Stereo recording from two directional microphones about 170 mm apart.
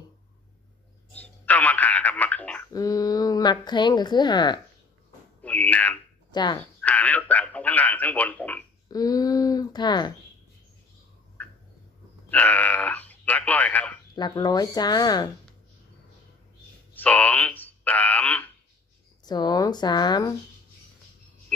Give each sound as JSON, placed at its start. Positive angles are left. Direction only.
{"t": 1.1, "sound": "speech", "side_deg": 10}
{"t": 2.7, "sound": "speech", "side_deg": 20}
{"t": 5.4, "sound": "a sound", "side_deg": 10}
{"t": 6.3, "sound": "speech", "side_deg": 25}
{"t": 6.8, "sound": "speech", "side_deg": 10}
{"t": 8.9, "sound": "speech", "side_deg": 20}
{"t": 12.3, "sound": "speech", "side_deg": 10}
{"t": 14.1, "sound": "speech", "side_deg": 25}
{"t": 16.9, "sound": "speech", "side_deg": 10}
{"t": 19.2, "sound": "speech", "side_deg": 25}